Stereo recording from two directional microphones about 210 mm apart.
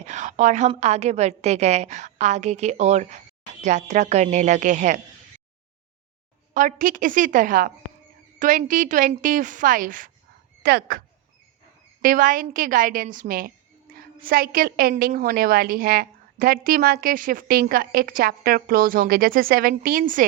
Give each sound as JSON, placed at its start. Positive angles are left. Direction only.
{"t": 0.0, "sound": "a woman's voice", "side_deg": -35}
{"t": 6.5, "sound": "a woman's voice", "side_deg": -40}
{"t": 12.0, "sound": "a woman's voice", "side_deg": -40}